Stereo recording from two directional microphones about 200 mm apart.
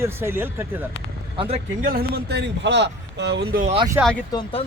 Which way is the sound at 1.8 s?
50° right (ahead or behind).